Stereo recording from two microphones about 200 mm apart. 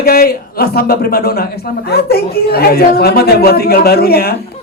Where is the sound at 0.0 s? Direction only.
50° left (ahead or behind).